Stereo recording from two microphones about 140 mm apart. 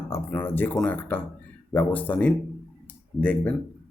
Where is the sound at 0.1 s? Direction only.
15° left (ahead or behind).